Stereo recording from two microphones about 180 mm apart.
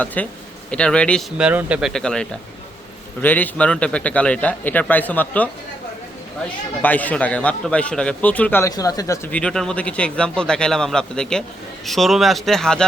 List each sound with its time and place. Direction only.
0.0 s a man's voice: 10° left (ahead or behind)
1.4 s a man's voice: 5° right (ahead or behind); by 5.5 s 10° left (ahead or behind)
6.8 s a man's voice: 10° left (ahead or behind)